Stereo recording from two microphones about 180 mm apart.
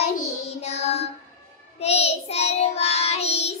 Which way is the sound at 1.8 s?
35° left (ahead or behind).